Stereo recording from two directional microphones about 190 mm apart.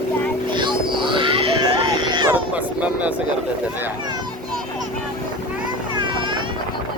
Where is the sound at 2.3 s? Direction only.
10° right (ahead or behind).